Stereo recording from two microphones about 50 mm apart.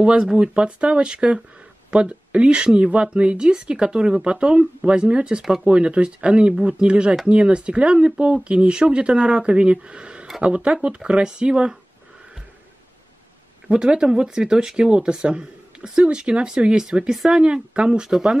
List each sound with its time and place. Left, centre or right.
0.0 s speech: centre
13.7 s speech: centre
17.1 s speech: centre
17.4 s speech: centre